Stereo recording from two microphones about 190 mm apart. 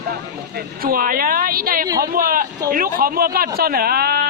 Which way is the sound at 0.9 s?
50° right (ahead or behind).